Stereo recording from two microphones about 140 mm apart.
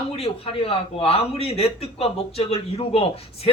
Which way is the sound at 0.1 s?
40° left (ahead or behind).